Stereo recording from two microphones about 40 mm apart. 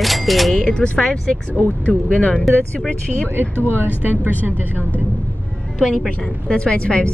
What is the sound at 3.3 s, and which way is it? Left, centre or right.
Speech, right.